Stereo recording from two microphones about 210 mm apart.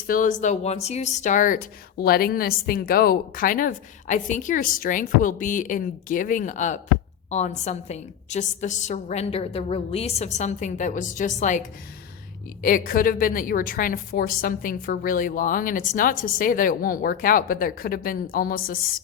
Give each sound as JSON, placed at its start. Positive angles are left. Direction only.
{"t": 0.1, "sound": "speech", "side_deg": 40}
{"t": 12.6, "sound": "a woman's voice", "side_deg": 40}